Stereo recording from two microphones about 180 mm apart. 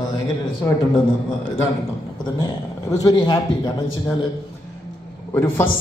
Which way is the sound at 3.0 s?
25° left (ahead or behind).